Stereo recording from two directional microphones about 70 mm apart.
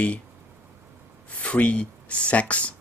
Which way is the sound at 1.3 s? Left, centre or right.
Centre.